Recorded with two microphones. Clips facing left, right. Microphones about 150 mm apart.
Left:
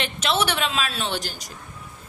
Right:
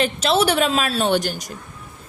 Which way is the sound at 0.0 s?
35° right (ahead or behind).